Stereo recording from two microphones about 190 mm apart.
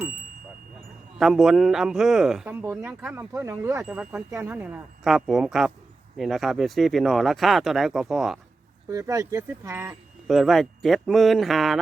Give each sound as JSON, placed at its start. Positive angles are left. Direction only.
{"t": 1.2, "sound": "a man's voice", "side_deg": 0}
{"t": 8.9, "sound": "speech", "side_deg": -15}
{"t": 10.2, "sound": "a man's voice", "side_deg": 0}